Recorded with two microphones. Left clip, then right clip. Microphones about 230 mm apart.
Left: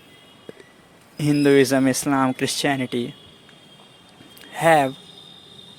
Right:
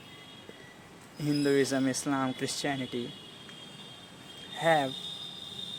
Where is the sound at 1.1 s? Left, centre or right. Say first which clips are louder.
Left 11 dB; left.